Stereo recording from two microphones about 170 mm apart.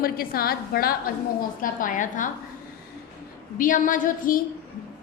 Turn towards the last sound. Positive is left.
turn(degrees=50)  # may be behind; listen again after turning